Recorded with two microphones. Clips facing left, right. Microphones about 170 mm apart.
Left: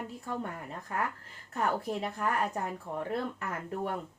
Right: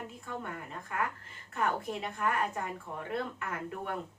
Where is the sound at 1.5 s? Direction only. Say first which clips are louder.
Left 2 dB; 40° left (ahead or behind).